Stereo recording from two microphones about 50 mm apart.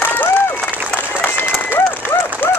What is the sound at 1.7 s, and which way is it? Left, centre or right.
Applause, left.